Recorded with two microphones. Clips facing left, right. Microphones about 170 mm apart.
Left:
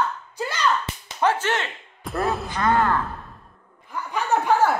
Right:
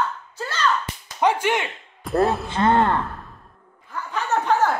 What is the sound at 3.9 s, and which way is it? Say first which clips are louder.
Chuckle: left 1 dB; 10° left (ahead or behind).